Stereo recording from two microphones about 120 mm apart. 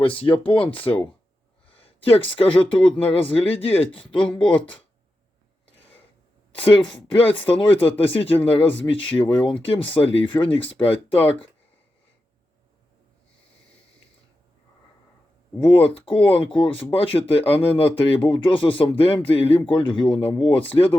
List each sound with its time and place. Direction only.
0.4 s speech: 50° left (ahead or behind)
4.3 s speech: 10° left (ahead or behind)
6.6 s speech: 50° left (ahead or behind)
15.6 s speech: 45° left (ahead or behind)